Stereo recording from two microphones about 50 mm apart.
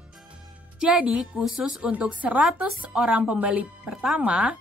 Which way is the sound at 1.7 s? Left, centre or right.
Right.